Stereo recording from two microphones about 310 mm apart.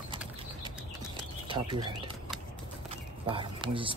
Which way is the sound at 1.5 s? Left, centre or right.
Centre.